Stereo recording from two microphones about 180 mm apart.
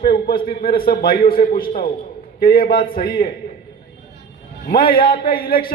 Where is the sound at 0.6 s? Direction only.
55° left (ahead or behind).